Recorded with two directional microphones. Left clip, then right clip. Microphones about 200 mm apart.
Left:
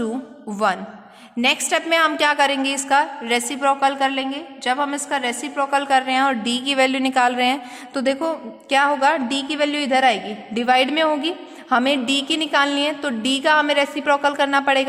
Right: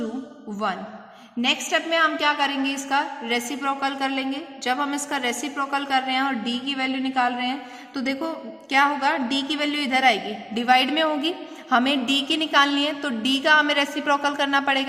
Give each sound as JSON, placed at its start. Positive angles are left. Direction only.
{"t": 0.6, "sound": "a man's voice", "side_deg": 40}